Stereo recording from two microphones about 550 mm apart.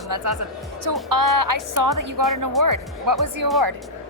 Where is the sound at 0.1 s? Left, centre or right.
Right.